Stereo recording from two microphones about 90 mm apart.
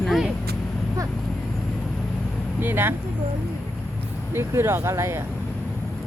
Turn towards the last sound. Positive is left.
turn(degrees=-30)  # may be behind; listen again after turning